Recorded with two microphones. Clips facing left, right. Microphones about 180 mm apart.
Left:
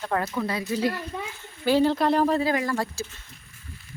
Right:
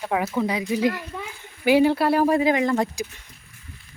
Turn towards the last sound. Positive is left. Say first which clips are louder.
# right 5 dB
turn(degrees=-15)  # may be behind; listen again after turning